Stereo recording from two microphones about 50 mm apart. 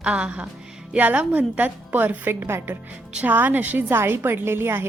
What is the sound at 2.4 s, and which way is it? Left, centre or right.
Speech, right.